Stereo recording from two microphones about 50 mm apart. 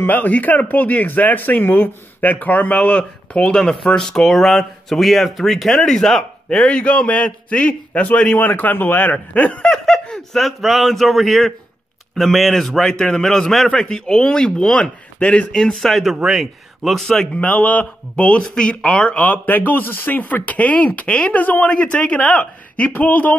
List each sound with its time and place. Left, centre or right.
0.0 s speech: left
2.8 s speech: left
6.6 s a man's voice: left
9.1 s a man's voice: left
9.7 s speech: centre
10.4 s speech: centre
15.9 s a man's voice: centre
17.4 s speech: left; by 19.1 s centre
19.1 s speech: left
21.4 s speech: left
21.6 s a man's voice: left